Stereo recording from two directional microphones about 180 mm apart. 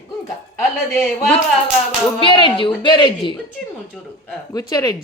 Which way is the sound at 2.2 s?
25° left (ahead or behind).